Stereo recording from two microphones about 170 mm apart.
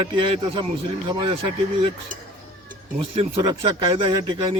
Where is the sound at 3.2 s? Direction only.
30° right (ahead or behind).